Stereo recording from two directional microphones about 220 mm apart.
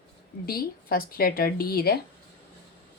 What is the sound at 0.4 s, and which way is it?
A woman's voice, 45° left (ahead or behind).